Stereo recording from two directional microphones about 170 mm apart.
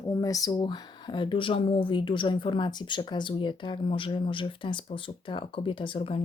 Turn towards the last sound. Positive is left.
turn(degrees=30)  # may be behind; listen again after turning